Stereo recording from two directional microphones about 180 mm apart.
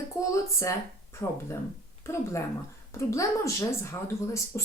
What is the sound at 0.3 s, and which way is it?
Speech, 15° left (ahead or behind).